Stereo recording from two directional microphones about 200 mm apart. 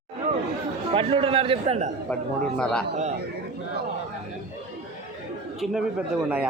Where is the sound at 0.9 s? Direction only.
25° right (ahead or behind).